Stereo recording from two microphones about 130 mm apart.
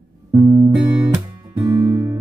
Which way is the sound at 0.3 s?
25° right (ahead or behind).